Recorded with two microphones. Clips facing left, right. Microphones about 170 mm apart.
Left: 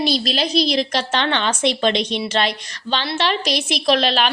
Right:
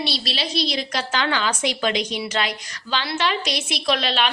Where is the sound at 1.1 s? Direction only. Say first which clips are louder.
Left 2 dB; 25° left (ahead or behind).